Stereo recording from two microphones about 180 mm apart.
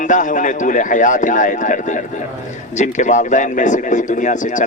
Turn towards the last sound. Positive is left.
turn(degrees=45)  # may be behind; listen again after turning